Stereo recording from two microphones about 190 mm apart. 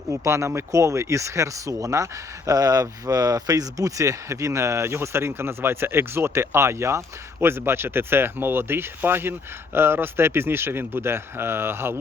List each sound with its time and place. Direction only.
0.1 s speech: 15° right (ahead or behind)